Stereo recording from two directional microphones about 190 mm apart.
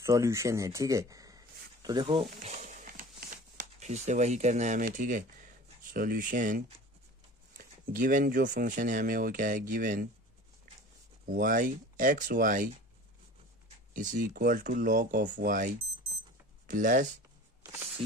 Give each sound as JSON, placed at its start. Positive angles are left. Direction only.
{"t": 0.0, "sound": "speech", "side_deg": -15}
{"t": 2.5, "sound": "a sound", "side_deg": -40}
{"t": 3.8, "sound": "speech", "side_deg": -40}
{"t": 11.2, "sound": "speech", "side_deg": -45}
{"t": 13.9, "sound": "speech", "side_deg": -45}